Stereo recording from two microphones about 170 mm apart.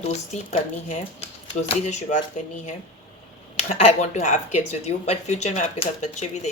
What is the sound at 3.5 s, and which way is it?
Speech, 40° left (ahead or behind).